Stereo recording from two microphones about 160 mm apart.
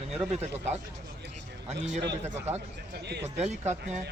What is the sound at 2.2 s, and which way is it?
Speech, 15° right (ahead or behind).